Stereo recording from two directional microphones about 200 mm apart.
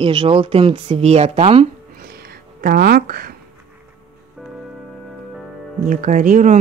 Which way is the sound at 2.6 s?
50° right (ahead or behind).